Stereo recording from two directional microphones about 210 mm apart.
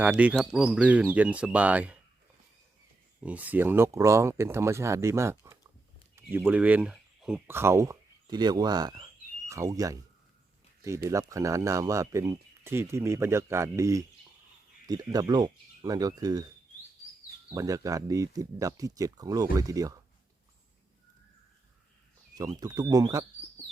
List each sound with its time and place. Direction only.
0.0 s speech: 5° right (ahead or behind)
3.2 s speech: 5° right (ahead or behind)
17.5 s speech: 15° right (ahead or behind)
22.4 s speech: 15° right (ahead or behind)